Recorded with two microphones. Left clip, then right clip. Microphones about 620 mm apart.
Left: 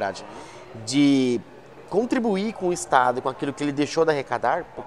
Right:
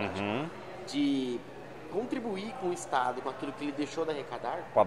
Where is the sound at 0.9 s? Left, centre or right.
Left.